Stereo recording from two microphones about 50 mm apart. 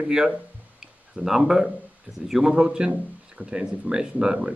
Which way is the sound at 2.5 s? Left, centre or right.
Centre.